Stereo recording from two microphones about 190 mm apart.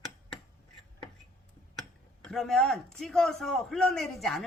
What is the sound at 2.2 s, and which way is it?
A man's voice, centre (ahead or behind).